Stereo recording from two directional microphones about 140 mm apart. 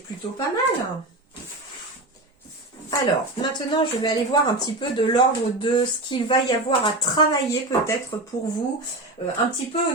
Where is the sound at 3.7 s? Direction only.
35° left (ahead or behind).